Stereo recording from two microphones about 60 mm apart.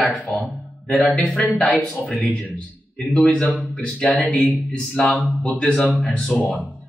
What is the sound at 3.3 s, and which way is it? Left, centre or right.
Speech, centre.